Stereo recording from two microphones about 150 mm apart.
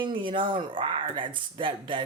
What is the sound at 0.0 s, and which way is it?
A woman's voice, 35° right (ahead or behind).